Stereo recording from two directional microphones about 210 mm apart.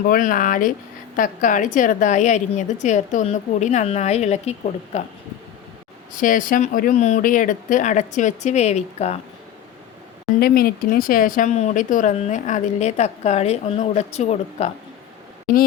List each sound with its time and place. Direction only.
0.1 s speech: 40° left (ahead or behind)
6.1 s speech: 40° left (ahead or behind)
10.4 s speech: 45° left (ahead or behind)